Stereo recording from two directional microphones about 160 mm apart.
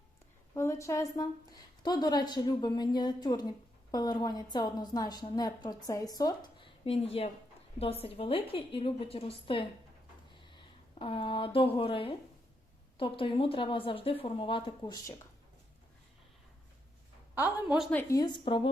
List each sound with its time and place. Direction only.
0.5 s a woman's voice: 15° left (ahead or behind)
6.8 s speech: 35° left (ahead or behind)
10.5 s speech: 30° left (ahead or behind)
17.3 s a woman's voice: 10° right (ahead or behind)
17.9 s a woman's voice: 20° left (ahead or behind)